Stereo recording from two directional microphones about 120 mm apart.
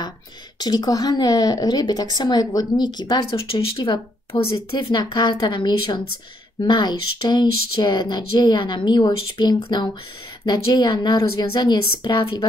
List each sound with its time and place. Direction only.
0.6 s a woman's voice: 35° left (ahead or behind)